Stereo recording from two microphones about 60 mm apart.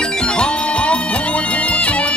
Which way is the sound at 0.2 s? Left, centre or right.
Centre.